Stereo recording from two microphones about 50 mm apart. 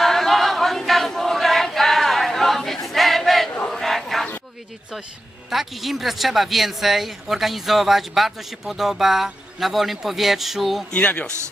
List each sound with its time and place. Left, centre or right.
0.0 s choir: centre
3.7 s a sound: centre
5.5 s speech: centre
10.9 s speech: left